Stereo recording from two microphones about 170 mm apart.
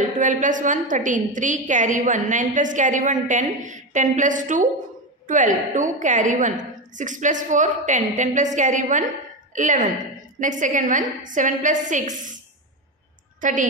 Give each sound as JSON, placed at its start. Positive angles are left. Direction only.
{"t": 0.2, "sound": "a woman's voice", "side_deg": -50}
{"t": 13.4, "sound": "a woman's voice", "side_deg": -50}